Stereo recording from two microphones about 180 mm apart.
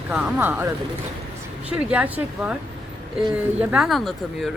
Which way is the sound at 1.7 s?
5° right (ahead or behind).